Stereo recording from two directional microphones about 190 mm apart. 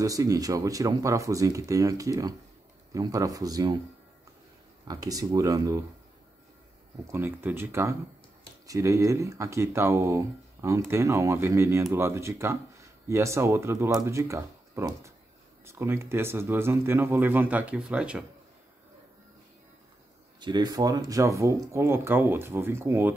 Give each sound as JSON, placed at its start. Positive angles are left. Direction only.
{"t": 0.0, "sound": "speech", "side_deg": -20}
{"t": 4.8, "sound": "speech", "side_deg": -20}
{"t": 7.1, "sound": "speech", "side_deg": -10}
{"t": 20.3, "sound": "speech", "side_deg": -25}